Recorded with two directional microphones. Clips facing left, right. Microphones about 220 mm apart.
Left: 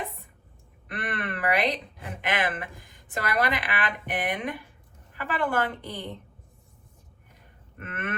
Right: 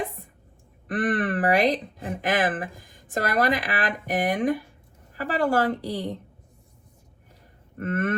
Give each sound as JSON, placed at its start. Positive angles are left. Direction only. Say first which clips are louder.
{"t": 0.9, "sound": "speech", "louder": "right 9 dB", "side_deg": -45}
{"t": 7.8, "sound": "speech", "louder": "right 10 dB", "side_deg": -40}